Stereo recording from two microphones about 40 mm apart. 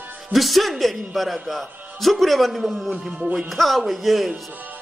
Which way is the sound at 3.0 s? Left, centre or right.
Centre.